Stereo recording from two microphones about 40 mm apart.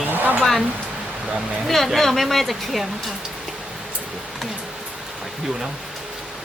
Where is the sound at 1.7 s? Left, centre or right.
Centre.